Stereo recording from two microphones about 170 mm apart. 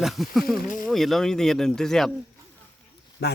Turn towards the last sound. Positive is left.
turn(degrees=75)  # may be behind; listen again after turning